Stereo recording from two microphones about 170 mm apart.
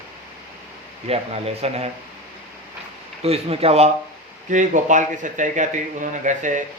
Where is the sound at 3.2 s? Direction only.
35° right (ahead or behind).